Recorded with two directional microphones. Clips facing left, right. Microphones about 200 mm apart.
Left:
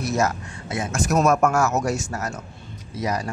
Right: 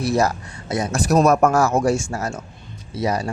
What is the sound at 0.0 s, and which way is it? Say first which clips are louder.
Speech: right 3 dB; 35° right (ahead or behind).